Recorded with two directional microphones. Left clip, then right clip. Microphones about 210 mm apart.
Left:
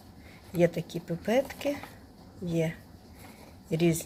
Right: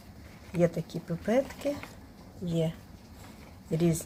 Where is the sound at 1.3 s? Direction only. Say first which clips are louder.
Left 1 dB; 5° right (ahead or behind).